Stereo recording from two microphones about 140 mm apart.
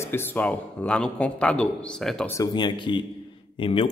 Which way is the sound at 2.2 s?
20° left (ahead or behind).